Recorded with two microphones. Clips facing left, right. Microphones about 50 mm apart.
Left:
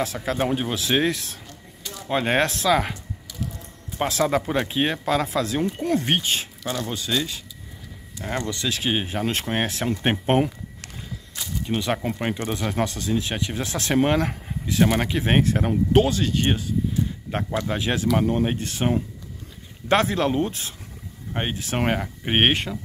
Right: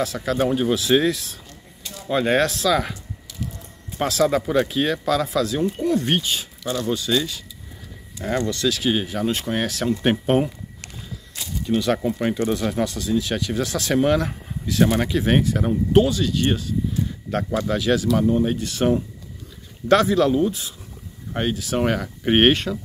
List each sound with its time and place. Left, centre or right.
0.0 s speech: left
0.7 s speech: left
2.0 s speech: left
4.1 s speech: left
6.6 s speech: left
8.3 s speech: centre; by 10.5 s left
11.6 s speech: left
12.7 s speech: left
18.8 s speech: centre
19.9 s speech: left
21.4 s speech: left
22.2 s speech: centre
22.5 s speech: left